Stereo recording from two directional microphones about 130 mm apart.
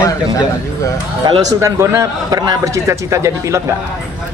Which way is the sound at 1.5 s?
20° right (ahead or behind).